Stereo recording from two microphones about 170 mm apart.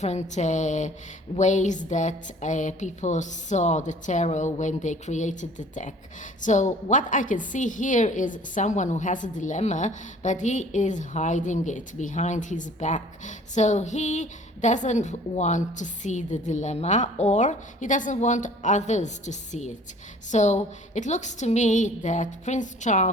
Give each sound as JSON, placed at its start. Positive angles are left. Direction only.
{"t": 0.0, "sound": "a woman's voice", "side_deg": 40}